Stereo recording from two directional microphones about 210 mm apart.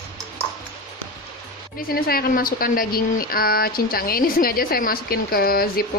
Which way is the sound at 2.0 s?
45° left (ahead or behind).